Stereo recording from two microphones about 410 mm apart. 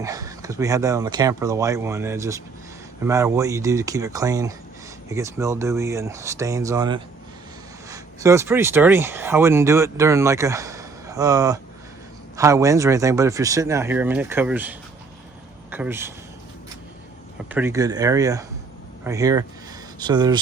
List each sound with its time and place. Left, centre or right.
0.0 s a man's voice: centre
17.5 s speech: centre